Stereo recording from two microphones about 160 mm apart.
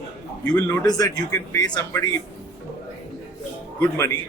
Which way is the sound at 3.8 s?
15° left (ahead or behind).